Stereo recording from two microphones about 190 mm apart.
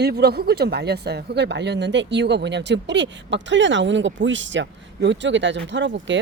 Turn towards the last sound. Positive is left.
turn(degrees=-75)  # may be behind; listen again after turning